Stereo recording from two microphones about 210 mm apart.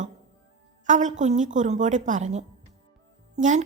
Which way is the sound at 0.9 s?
35° right (ahead or behind).